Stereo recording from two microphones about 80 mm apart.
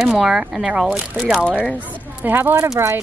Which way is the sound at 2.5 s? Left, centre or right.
Right.